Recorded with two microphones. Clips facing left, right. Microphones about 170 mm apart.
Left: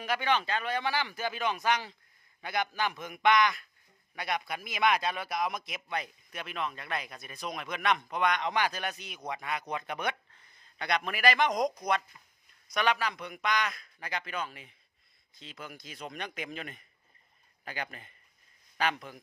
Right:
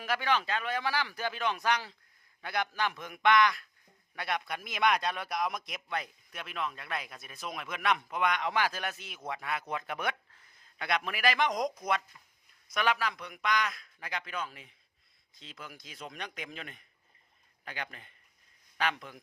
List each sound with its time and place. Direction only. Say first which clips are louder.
0.0 s a man's voice: left 1 dB; centre (ahead or behind)